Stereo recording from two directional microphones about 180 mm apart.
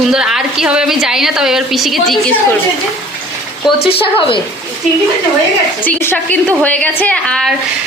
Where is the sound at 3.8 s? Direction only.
30° left (ahead or behind).